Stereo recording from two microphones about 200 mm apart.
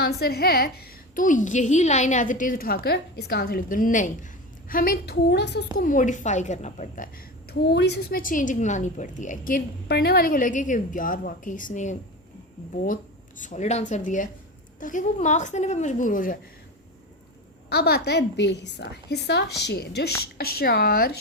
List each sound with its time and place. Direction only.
0.0 s a woman's voice: 50° left (ahead or behind)
5.7 s a woman's voice: 40° left (ahead or behind)
13.4 s a woman's voice: 35° left (ahead or behind)
17.7 s a woman's voice: 50° left (ahead or behind)